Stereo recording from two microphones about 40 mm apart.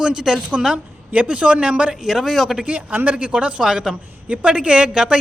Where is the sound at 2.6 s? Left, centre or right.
Right; by 4.0 s centre.